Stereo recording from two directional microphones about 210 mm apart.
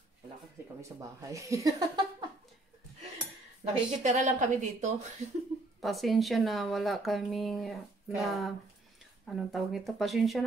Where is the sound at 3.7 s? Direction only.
35° right (ahead or behind).